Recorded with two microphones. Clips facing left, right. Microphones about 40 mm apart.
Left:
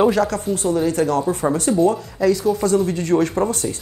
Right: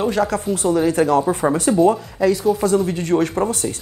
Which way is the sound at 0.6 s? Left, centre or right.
Centre.